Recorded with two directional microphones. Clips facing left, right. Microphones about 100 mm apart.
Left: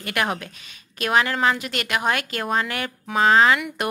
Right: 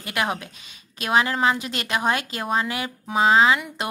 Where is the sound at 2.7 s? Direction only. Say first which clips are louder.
Even; 15° right (ahead or behind).